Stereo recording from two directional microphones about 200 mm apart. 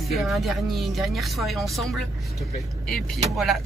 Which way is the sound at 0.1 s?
Centre (ahead or behind).